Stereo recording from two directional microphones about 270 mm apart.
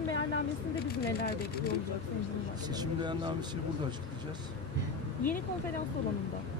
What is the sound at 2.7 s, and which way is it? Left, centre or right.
Speech, centre.